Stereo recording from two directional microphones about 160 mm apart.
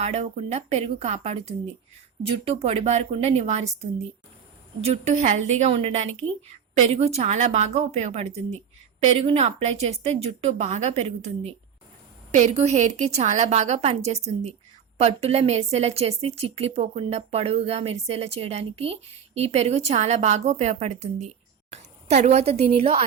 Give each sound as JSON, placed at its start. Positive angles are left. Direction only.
{"t": 0.0, "sound": "a woman's voice", "side_deg": -40}